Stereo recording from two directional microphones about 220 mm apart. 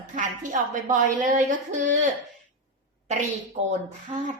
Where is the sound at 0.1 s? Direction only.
35° right (ahead or behind).